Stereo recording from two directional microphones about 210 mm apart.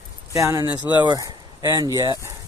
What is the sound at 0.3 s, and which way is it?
Speech, 15° right (ahead or behind).